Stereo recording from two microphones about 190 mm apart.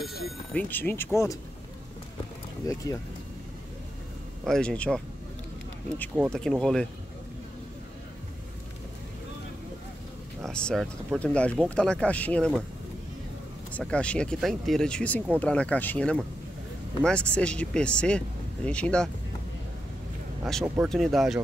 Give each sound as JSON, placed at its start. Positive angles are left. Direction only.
{"t": 0.0, "sound": "speech", "side_deg": 0}
{"t": 2.6, "sound": "speech", "side_deg": 15}
{"t": 4.5, "sound": "speech", "side_deg": 5}
{"t": 6.3, "sound": "speech", "side_deg": 5}
{"t": 10.4, "sound": "speech", "side_deg": 5}
{"t": 13.7, "sound": "speech", "side_deg": 5}
{"t": 20.6, "sound": "speech", "side_deg": -10}
{"t": 20.9, "sound": "speech", "side_deg": 0}